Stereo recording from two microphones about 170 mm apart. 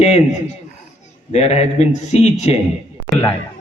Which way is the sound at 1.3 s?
40° left (ahead or behind).